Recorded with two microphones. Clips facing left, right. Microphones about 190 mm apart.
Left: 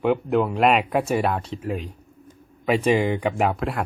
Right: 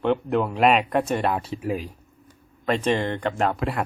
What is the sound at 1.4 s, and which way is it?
Speech, 10° right (ahead or behind).